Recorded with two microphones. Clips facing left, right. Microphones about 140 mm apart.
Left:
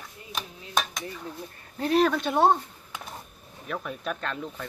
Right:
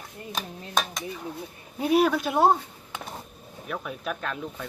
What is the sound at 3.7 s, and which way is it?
Speech, 5° right (ahead or behind).